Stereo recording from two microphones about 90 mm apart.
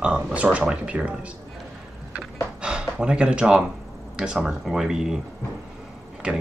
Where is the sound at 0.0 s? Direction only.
10° right (ahead or behind).